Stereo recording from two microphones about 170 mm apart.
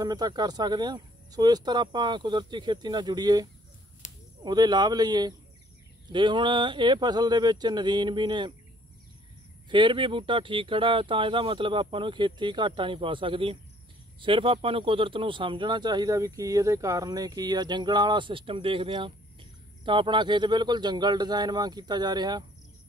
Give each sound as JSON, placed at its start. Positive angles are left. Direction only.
{"t": 0.0, "sound": "speech", "side_deg": -25}
{"t": 4.0, "sound": "a sound", "side_deg": 45}
{"t": 4.4, "sound": "speech", "side_deg": -25}
{"t": 9.7, "sound": "speech", "side_deg": -30}